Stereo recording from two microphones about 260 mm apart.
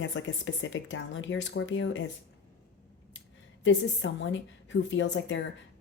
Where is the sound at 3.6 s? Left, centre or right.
Left.